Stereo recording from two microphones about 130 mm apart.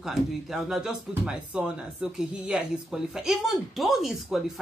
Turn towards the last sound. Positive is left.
turn(degrees=0)  # may be behind; listen again after turning